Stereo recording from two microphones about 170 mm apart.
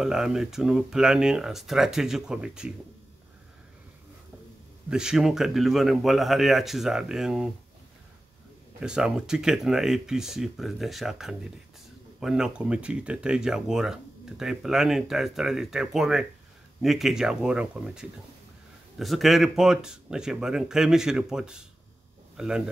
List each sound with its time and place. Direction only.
0.0 s speech: 5° right (ahead or behind)
4.8 s speech: 5° right (ahead or behind)
8.8 s speech: 5° right (ahead or behind)